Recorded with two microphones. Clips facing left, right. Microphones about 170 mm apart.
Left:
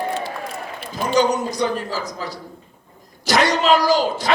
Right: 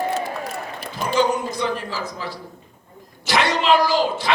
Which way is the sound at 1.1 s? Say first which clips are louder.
Left 2 dB; 40° left (ahead or behind).